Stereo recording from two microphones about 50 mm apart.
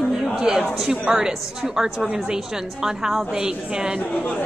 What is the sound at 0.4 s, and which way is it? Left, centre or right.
Speech, centre.